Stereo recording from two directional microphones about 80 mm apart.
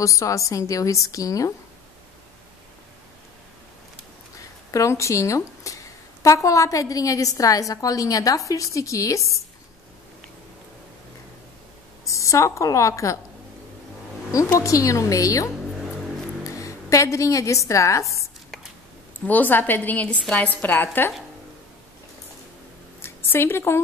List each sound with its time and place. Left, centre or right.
0.0 s a woman's voice: left
4.4 s speech: left
12.1 s a woman's voice: left
14.3 s a woman's voice: left
19.2 s a woman's voice: left
23.0 s a sound: left